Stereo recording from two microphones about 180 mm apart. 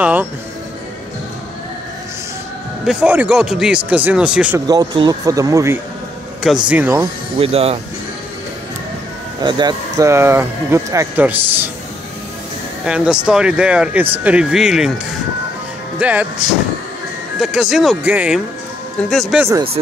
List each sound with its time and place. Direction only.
0.0 s speech: 10° right (ahead or behind)
2.8 s speech: 5° right (ahead or behind)
4.6 s speech: 25° right (ahead or behind)
7.3 s speech: 35° right (ahead or behind)
9.4 s speech: 25° right (ahead or behind)
12.8 s speech: 5° right (ahead or behind)
16.0 s speech: 10° right (ahead or behind)
17.4 s speech: centre (ahead or behind)